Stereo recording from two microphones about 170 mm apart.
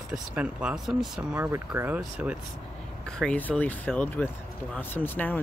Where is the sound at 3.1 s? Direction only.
5° left (ahead or behind).